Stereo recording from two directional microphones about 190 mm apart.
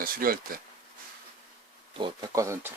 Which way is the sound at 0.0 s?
50° right (ahead or behind).